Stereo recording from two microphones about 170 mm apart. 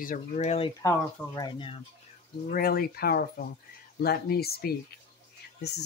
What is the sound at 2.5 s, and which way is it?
Speech, 60° left (ahead or behind).